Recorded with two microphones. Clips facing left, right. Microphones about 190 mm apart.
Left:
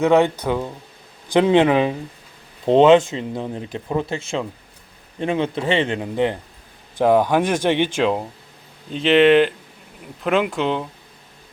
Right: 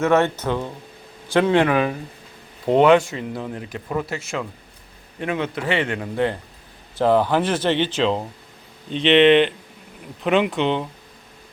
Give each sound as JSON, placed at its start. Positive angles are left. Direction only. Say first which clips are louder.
{"t": 0.0, "sound": "speech", "louder": "left 2 dB", "side_deg": 15}